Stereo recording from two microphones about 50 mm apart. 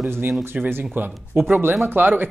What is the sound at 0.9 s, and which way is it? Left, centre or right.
Speech, right.